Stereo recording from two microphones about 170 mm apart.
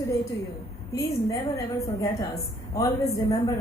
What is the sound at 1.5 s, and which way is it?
A woman's voice, 15° left (ahead or behind).